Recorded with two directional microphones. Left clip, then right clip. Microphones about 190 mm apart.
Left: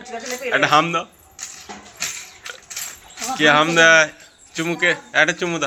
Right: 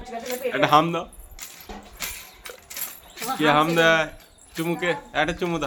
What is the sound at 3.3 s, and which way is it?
A man's voice, centre (ahead or behind).